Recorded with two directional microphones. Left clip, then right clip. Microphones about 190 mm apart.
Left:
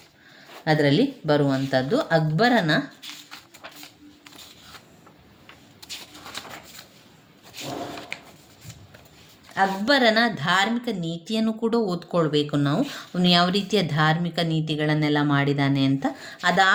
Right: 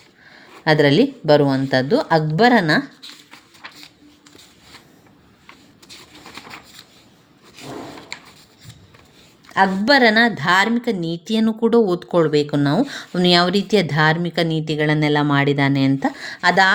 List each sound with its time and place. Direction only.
0.6 s a woman's voice: 40° right (ahead or behind)
9.6 s a woman's voice: 35° right (ahead or behind)